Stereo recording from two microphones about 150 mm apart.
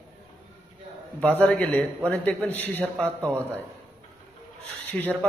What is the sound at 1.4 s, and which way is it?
A man's voice, 10° left (ahead or behind).